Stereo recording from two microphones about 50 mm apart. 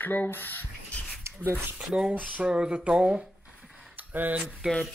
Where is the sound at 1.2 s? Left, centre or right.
Right.